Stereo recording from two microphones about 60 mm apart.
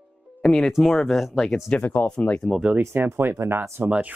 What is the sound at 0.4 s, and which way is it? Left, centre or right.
Speech, centre.